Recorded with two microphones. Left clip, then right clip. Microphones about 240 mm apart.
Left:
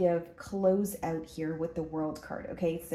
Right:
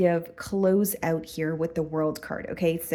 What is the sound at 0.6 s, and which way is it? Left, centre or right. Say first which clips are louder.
Speech: right 4 dB; right.